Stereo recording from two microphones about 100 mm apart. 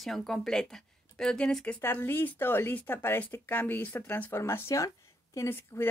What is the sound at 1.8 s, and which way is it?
A woman's voice, 20° left (ahead or behind).